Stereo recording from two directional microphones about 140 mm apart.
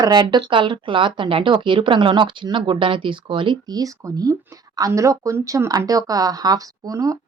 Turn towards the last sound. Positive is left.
turn(degrees=-25)  # may be behind; listen again after turning